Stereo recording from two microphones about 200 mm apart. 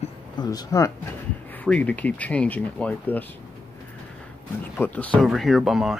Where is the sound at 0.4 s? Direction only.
20° left (ahead or behind).